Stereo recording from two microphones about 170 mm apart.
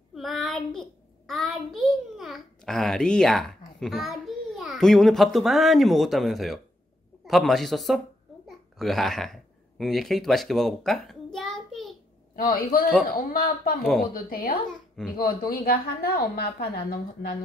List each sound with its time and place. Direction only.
0.1 s child singing: centre (ahead or behind)
7.2 s a man's voice: centre (ahead or behind)
8.5 s babbling: centre (ahead or behind)
12.4 s a woman's voice: 60° left (ahead or behind)
14.7 s speech: 5° left (ahead or behind)
15.1 s a woman's voice: 60° left (ahead or behind)